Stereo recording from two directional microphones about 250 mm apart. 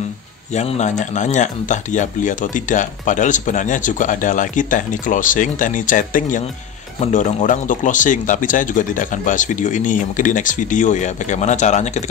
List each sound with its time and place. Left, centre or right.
0.5 s speech: left